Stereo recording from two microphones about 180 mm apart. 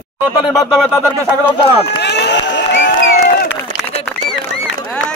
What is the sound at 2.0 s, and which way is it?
Speech, 70° left (ahead or behind).